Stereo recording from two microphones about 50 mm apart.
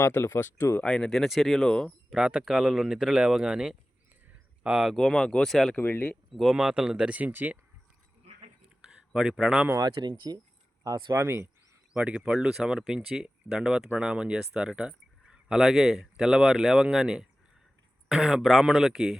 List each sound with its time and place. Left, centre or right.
0.0 s speech: left
0.8 s speech: centre
2.1 s speech: centre
4.9 s speech: centre
5.7 s speech: left
6.3 s speech: centre
7.2 s speech: right
9.1 s speech: centre
11.1 s speech: right
12.0 s speech: right
12.3 s speech: centre